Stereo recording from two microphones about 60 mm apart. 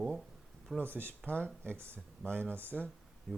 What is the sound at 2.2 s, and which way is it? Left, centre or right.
Speech, centre.